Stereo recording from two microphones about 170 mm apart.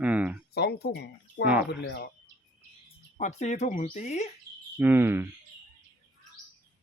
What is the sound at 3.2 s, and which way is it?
Speech, 45° left (ahead or behind).